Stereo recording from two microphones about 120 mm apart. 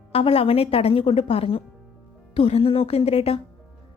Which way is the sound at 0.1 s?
55° left (ahead or behind).